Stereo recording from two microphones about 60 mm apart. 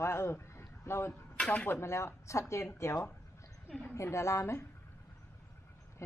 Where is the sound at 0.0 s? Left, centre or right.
Left.